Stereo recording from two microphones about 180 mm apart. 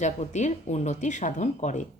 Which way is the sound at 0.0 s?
40° left (ahead or behind).